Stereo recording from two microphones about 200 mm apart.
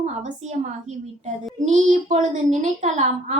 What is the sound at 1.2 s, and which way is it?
A woman's voice, 40° right (ahead or behind).